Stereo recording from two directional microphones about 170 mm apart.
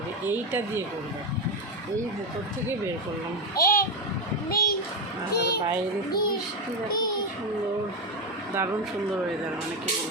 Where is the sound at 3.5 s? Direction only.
60° left (ahead or behind).